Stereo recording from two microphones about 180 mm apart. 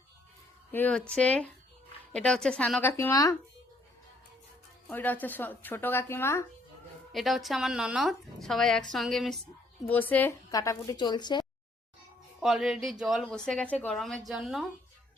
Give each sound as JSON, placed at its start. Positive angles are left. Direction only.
{"t": 0.7, "sound": "a woman's voice", "side_deg": 10}
{"t": 4.9, "sound": "a woman's voice", "side_deg": 10}
{"t": 7.1, "sound": "a woman's voice", "side_deg": 0}
{"t": 12.4, "sound": "a woman's voice", "side_deg": 0}